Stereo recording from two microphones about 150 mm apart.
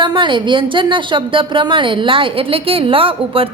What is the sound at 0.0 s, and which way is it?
A woman's voice, 30° right (ahead or behind).